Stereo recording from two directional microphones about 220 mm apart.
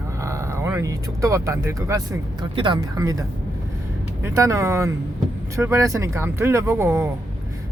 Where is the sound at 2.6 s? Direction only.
20° right (ahead or behind).